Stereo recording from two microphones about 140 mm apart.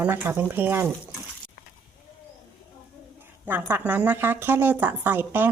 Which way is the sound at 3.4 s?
15° right (ahead or behind).